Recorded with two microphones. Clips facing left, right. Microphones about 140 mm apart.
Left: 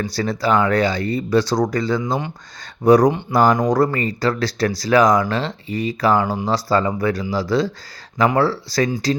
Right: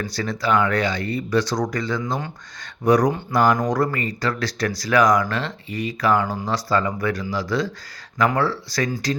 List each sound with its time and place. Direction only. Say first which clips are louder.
0.0 s speech: left 4 dB; 35° left (ahead or behind)